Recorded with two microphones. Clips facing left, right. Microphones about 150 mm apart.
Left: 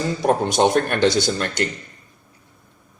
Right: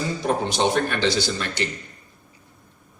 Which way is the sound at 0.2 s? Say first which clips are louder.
Left 6 dB; 50° left (ahead or behind).